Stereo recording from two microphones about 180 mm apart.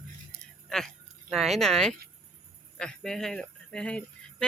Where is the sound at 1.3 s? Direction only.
Centre (ahead or behind).